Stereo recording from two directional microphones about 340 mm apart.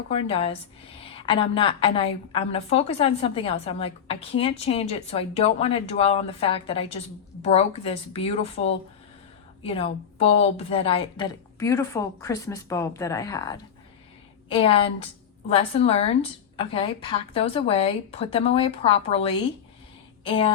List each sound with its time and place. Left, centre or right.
0.1 s a woman's voice: centre